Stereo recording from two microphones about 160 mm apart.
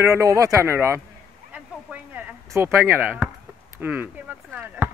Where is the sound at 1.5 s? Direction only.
10° right (ahead or behind).